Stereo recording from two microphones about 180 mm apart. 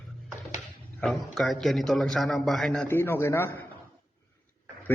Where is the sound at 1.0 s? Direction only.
Centre (ahead or behind).